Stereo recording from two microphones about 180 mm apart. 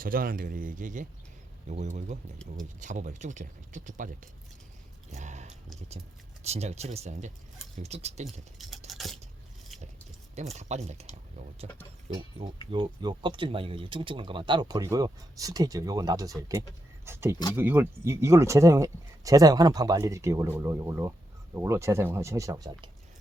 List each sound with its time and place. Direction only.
0.0 s speech: 55° right (ahead or behind)
5.1 s a sound: 40° right (ahead or behind)
6.4 s speech: 35° right (ahead or behind)
8.9 s a sound: centre (ahead or behind)
10.3 s speech: 40° right (ahead or behind)
12.7 s speech: 25° right (ahead or behind)